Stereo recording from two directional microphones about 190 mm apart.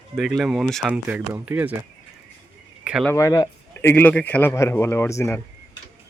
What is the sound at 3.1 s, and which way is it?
A man's voice, 15° left (ahead or behind).